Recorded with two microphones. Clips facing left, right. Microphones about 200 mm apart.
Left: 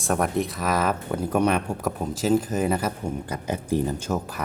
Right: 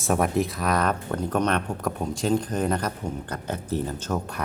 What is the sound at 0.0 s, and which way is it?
Speech, centre (ahead or behind).